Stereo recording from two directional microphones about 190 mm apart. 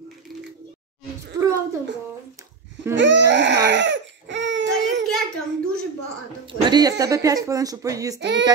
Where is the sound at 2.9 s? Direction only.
70° right (ahead or behind).